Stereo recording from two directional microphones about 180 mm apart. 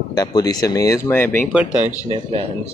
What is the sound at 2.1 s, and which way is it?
Speech, 35° right (ahead or behind).